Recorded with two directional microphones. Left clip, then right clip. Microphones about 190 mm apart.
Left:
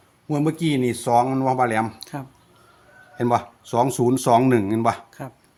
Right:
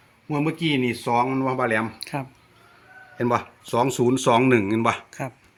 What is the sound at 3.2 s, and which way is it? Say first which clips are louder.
Speech: left 2 dB; 30° left (ahead or behind).